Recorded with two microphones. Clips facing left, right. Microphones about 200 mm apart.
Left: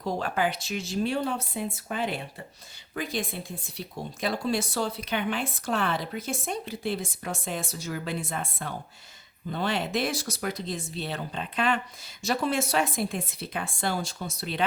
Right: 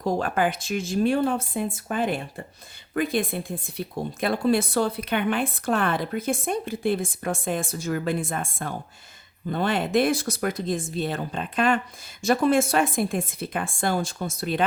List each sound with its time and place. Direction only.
0.0 s speech: 50° right (ahead or behind)